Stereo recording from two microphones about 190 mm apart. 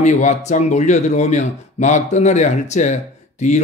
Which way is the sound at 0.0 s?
40° left (ahead or behind).